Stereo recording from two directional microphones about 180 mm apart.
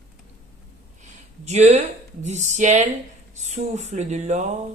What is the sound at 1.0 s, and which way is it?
A man's voice, 40° right (ahead or behind).